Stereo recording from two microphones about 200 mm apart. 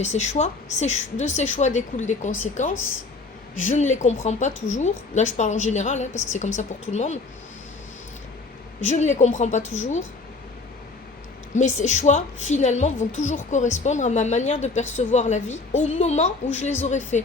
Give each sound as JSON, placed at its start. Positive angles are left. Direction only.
{"t": 0.0, "sound": "a woman's voice", "side_deg": 35}
{"t": 8.8, "sound": "a woman's voice", "side_deg": 35}
{"t": 11.5, "sound": "a woman's voice", "side_deg": 35}